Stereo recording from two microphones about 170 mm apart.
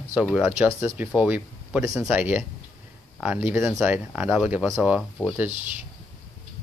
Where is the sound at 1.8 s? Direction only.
20° right (ahead or behind).